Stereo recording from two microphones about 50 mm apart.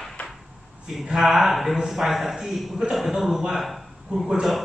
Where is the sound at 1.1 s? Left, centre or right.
Centre.